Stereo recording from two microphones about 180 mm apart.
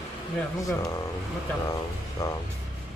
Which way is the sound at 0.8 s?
20° left (ahead or behind).